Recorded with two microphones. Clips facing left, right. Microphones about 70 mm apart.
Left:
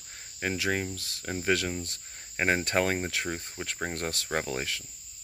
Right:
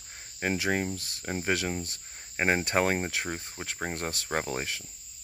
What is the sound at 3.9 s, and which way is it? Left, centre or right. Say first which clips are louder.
Cricket: even; right.